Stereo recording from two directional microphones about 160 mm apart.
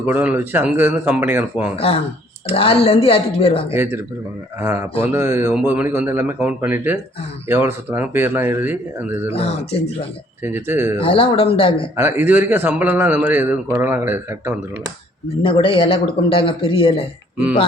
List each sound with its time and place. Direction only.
0.0 s a man's voice: 10° right (ahead or behind)
1.7 s speech: 35° left (ahead or behind)
3.8 s a man's voice: 15° right (ahead or behind)
9.3 s speech: 35° left (ahead or behind)
10.4 s a man's voice: 15° right (ahead or behind)
11.0 s speech: 35° left (ahead or behind)
11.9 s a man's voice: 15° right (ahead or behind)
15.4 s speech: 35° left (ahead or behind)